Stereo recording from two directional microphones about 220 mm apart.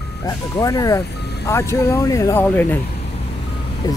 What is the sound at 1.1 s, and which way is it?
Vehicle, 50° left (ahead or behind).